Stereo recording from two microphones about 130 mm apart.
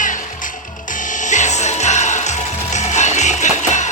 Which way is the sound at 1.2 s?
65° left (ahead or behind).